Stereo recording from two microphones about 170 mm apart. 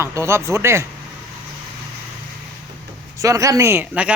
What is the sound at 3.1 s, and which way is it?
A man's voice, 20° right (ahead or behind).